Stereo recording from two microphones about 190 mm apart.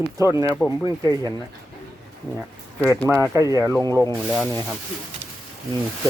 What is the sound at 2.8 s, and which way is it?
Speech, 10° left (ahead or behind).